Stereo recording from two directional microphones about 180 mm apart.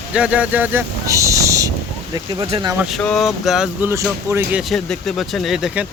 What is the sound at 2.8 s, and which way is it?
Speech, centre (ahead or behind).